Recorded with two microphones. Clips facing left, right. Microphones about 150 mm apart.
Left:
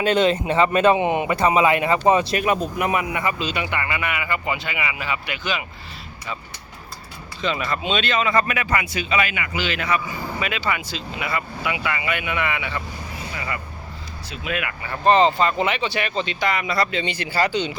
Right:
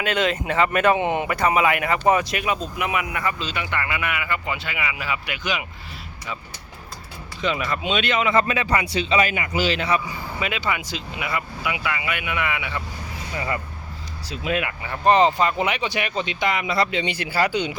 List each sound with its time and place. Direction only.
0.0 s speech: 30° left (ahead or behind)
2.4 s speech: 45° left (ahead or behind)
3.1 s a man's voice: 15° left (ahead or behind)
3.8 s speech: centre (ahead or behind)
7.4 s speech: 10° right (ahead or behind); by 9.2 s 30° right (ahead or behind)
9.2 s a man's voice: 40° right (ahead or behind)
10.4 s speech: 15° right (ahead or behind)
13.3 s a man's voice: 30° right (ahead or behind)
14.8 s speech: 15° right (ahead or behind)